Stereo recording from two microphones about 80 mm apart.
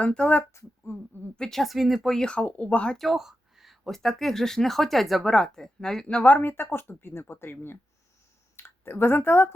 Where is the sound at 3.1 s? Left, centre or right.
Centre.